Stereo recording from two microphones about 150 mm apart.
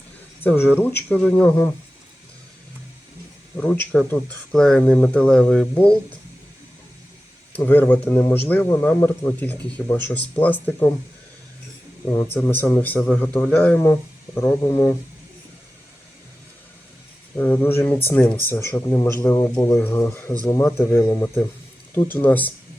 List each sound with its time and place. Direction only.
0.4 s a man's voice: 15° left (ahead or behind)
3.6 s a man's voice: 10° left (ahead or behind)
7.5 s a man's voice: 10° left (ahead or behind)
12.1 s a man's voice: 15° left (ahead or behind)
17.3 s a man's voice: 15° left (ahead or behind)